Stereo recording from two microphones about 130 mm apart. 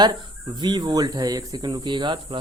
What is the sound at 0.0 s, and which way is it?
Speech, 35° right (ahead or behind).